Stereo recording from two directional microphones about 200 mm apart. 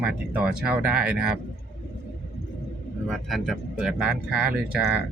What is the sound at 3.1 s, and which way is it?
Speech, centre (ahead or behind).